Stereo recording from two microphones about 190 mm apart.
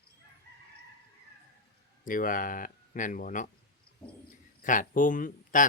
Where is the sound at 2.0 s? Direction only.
45° left (ahead or behind).